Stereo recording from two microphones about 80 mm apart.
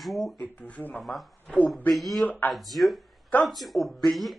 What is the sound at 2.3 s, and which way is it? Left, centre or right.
Speech, centre.